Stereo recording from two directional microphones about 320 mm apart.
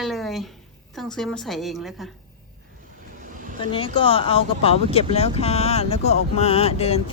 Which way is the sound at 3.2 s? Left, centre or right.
Right.